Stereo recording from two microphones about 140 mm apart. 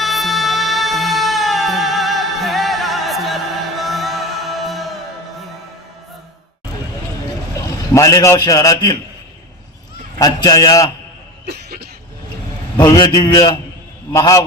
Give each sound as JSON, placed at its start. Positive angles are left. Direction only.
{"t": 0.0, "sound": "music", "side_deg": 0}
{"t": 7.9, "sound": "a man's voice", "side_deg": 25}
{"t": 10.2, "sound": "a man's voice", "side_deg": 25}
{"t": 12.7, "sound": "a man's voice", "side_deg": 25}